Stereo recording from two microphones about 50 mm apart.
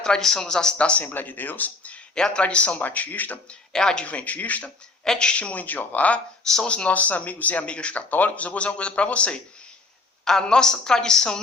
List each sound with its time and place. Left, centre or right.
0.0 s a woman's voice: centre
0.8 s speech: left
1.1 s speech: left
2.1 s a woman's voice: centre; by 3.4 s left
3.7 s speech: centre
4.0 s speech: left
5.0 s a woman's voice: centre
5.3 s speech: left
6.4 s speech: centre
6.7 s a woman's voice: left